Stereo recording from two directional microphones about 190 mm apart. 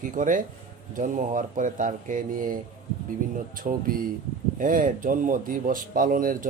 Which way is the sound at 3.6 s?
50° right (ahead or behind).